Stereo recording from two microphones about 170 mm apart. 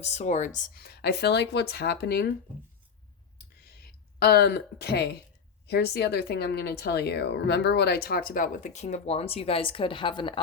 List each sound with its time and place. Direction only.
0.0 s speech: 40° left (ahead or behind); by 2.3 s 70° left (ahead or behind)
3.6 s a sound: 65° left (ahead or behind)
5.6 s speech: 75° left (ahead or behind); by 10.4 s 30° left (ahead or behind)